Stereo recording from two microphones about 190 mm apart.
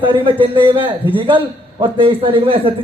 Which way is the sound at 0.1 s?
25° right (ahead or behind).